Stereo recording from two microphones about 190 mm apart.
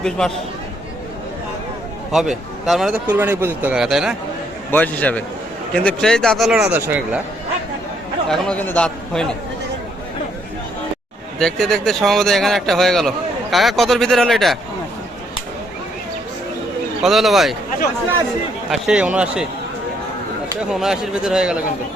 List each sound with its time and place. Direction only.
0.0 s speech: centre (ahead or behind)
2.1 s speech: centre (ahead or behind)
4.7 s a man's voice: 10° left (ahead or behind); by 7.2 s 10° right (ahead or behind)
8.3 s speech: 5° left (ahead or behind)
11.3 s speech: 5° left (ahead or behind)
17.0 s speech: centre (ahead or behind)
18.7 s speech: 5° right (ahead or behind)
20.7 s speech: centre (ahead or behind)